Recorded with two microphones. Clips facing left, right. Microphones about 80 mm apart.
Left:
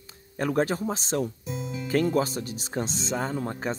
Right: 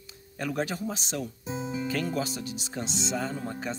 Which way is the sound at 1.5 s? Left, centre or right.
Centre.